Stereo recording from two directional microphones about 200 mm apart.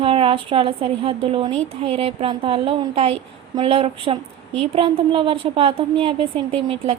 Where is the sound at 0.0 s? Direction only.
25° right (ahead or behind).